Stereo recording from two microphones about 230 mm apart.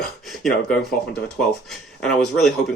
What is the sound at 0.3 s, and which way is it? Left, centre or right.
Speech, centre.